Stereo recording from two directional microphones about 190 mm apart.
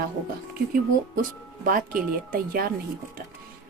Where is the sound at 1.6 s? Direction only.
45° right (ahead or behind).